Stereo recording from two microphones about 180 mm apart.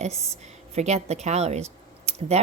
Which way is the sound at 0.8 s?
35° right (ahead or behind).